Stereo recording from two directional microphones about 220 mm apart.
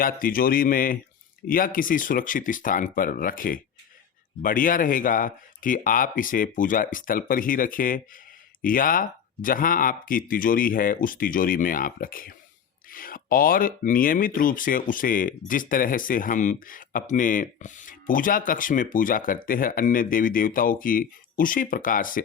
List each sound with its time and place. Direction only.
0.0 s speech: 40° left (ahead or behind)